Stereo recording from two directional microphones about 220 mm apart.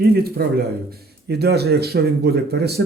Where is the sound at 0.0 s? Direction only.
45° right (ahead or behind).